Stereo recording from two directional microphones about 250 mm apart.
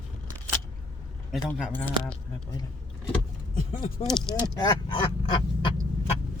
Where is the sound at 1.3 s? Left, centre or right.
Centre.